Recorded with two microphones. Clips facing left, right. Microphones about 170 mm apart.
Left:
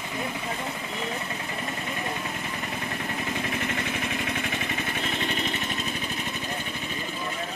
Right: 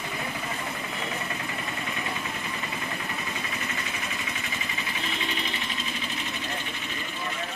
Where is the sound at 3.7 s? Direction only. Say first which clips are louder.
Left 5 dB; 55° left (ahead or behind).